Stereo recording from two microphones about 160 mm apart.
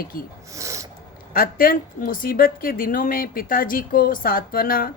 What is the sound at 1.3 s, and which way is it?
Speech, 65° left (ahead or behind).